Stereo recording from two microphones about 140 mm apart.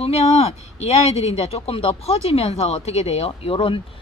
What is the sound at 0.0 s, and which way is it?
Speech, 50° left (ahead or behind).